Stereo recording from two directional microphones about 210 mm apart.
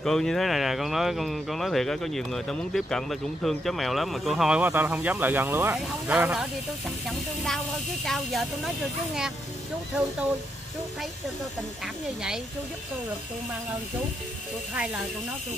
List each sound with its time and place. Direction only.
0.0 s speech: 5° left (ahead or behind)
11.8 s speech: 5° right (ahead or behind)